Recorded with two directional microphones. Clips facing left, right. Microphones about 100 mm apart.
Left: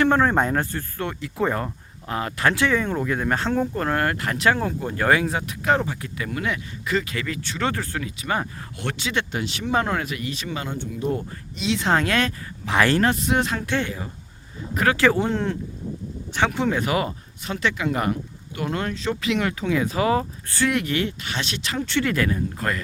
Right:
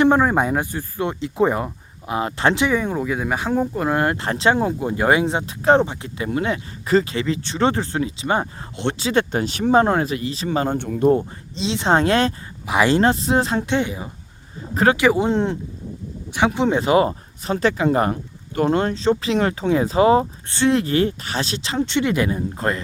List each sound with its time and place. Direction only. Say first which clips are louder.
0.0 s speech: right 3 dB; 15° right (ahead or behind); by 9.7 s 40° right (ahead or behind)
9.7 s speech: right 7 dB; 30° right (ahead or behind)
10.8 s speech: right 9 dB; 55° right (ahead or behind)
11.1 s speech: right 8 dB; 30° right (ahead or behind)
12.6 s speech: right 3 dB; 15° right (ahead or behind)